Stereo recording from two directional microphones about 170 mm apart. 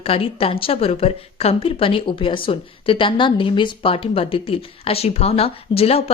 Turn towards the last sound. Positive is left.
turn(degrees=35)  # may be behind; listen again after turning